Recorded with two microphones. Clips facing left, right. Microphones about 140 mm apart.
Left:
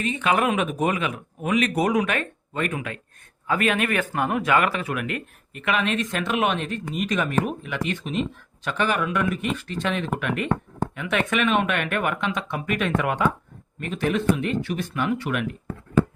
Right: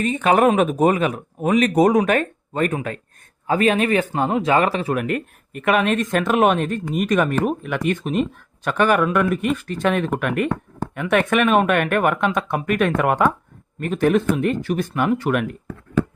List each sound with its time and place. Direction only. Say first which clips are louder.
0.0 s speech: right 6 dB; 40° right (ahead or behind)